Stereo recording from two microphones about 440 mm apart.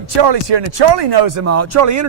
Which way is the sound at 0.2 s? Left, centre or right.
Right.